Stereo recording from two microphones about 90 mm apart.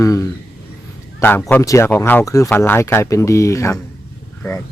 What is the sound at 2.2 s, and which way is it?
Speech, 35° left (ahead or behind).